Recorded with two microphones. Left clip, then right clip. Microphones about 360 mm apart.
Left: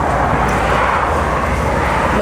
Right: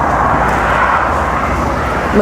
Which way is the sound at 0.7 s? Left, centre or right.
Left.